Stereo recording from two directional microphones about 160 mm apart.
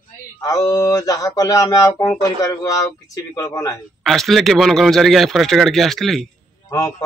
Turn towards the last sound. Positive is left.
turn(degrees=20)  # may be behind; listen again after turning